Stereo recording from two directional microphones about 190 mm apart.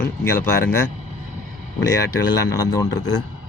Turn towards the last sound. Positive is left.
turn(degrees=20)  # may be behind; listen again after turning